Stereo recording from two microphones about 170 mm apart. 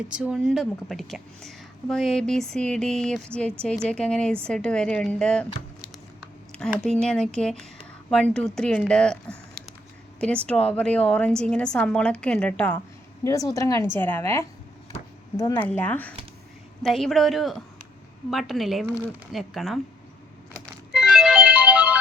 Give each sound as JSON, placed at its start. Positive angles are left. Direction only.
{"t": 0.1, "sound": "a woman's voice", "side_deg": -5}
{"t": 6.6, "sound": "a woman's voice", "side_deg": 5}
{"t": 20.9, "sound": "music", "side_deg": -5}